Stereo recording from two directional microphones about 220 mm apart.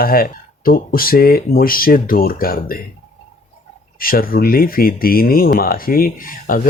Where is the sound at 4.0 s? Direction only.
40° left (ahead or behind).